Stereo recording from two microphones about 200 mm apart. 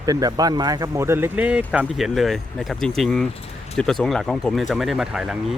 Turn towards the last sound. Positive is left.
turn(degrees=-5)  # may be behind; listen again after turning